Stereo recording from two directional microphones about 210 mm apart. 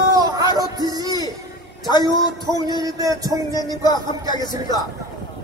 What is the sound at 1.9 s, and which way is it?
Music, 20° left (ahead or behind).